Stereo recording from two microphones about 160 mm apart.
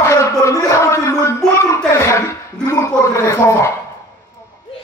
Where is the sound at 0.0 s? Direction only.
20° left (ahead or behind).